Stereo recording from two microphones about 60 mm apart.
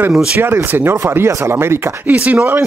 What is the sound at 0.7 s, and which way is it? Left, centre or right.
A man's voice, right.